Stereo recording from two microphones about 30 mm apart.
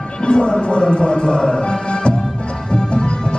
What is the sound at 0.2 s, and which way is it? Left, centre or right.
Speech, left.